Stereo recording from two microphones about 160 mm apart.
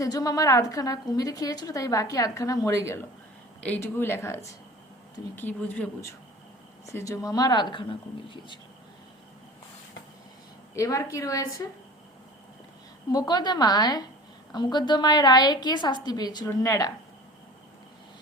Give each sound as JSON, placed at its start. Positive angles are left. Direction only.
{"t": 0.0, "sound": "a woman's voice", "side_deg": 20}
{"t": 10.8, "sound": "a woman's voice", "side_deg": 20}
{"t": 13.1, "sound": "a woman's voice", "side_deg": 25}